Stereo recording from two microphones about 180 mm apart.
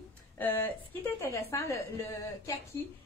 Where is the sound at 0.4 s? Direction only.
10° left (ahead or behind).